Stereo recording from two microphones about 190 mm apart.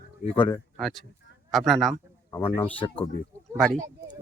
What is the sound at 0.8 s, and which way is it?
Speech, centre (ahead or behind).